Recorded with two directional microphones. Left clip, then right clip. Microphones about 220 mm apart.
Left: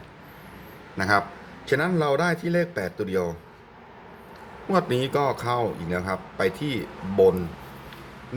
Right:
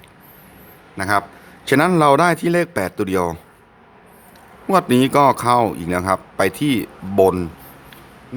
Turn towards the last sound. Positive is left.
turn(degrees=-45)  # may be behind; listen again after turning